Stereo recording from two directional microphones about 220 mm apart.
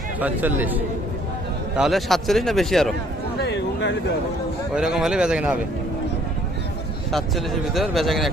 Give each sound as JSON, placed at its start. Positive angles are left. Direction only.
{"t": 0.2, "sound": "speech", "side_deg": -5}
{"t": 3.4, "sound": "a sound", "side_deg": 55}
{"t": 4.7, "sound": "speech", "side_deg": -5}
{"t": 7.1, "sound": "speech", "side_deg": 0}